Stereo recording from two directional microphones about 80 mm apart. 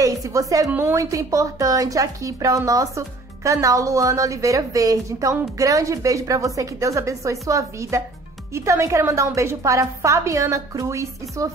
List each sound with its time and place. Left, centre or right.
0.0 s speech: right
0.7 s a woman's voice: right
0.9 s a woman's voice: right